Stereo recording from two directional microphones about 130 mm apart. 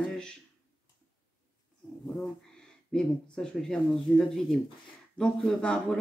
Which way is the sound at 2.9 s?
5° left (ahead or behind).